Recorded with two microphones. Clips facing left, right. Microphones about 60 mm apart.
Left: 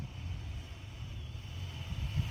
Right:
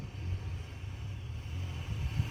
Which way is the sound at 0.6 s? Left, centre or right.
Right.